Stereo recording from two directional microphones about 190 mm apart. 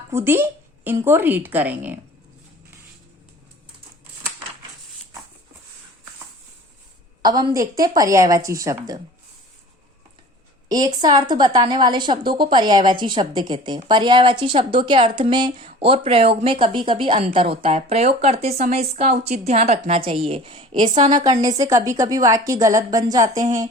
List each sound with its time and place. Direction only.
0.1 s a woman's voice: 15° right (ahead or behind)
7.2 s a woman's voice: 20° right (ahead or behind)
10.7 s a woman's voice: 20° right (ahead or behind)
20.8 s a woman's voice: 40° right (ahead or behind)
21.2 s a woman's voice: 20° right (ahead or behind)